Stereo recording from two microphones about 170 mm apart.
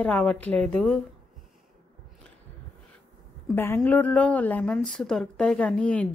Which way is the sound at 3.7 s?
10° left (ahead or behind).